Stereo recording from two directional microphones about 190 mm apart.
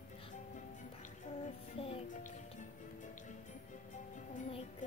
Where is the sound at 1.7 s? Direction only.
30° left (ahead or behind).